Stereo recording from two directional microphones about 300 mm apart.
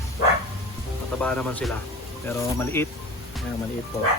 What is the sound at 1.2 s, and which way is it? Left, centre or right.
Speech, centre.